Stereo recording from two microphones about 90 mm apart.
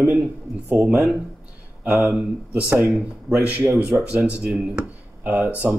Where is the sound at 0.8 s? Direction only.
10° right (ahead or behind).